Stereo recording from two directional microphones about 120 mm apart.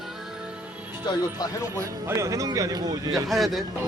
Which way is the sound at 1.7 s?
25° right (ahead or behind).